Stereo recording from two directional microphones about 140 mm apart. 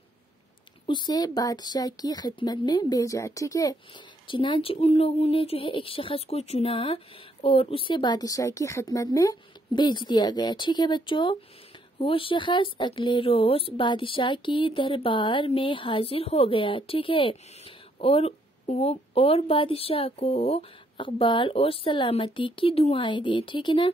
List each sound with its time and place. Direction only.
0.8 s speech: 35° left (ahead or behind)
4.3 s speech: 35° left (ahead or behind)